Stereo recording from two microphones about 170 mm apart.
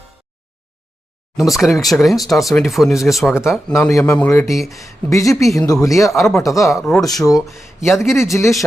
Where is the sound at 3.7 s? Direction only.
15° left (ahead or behind).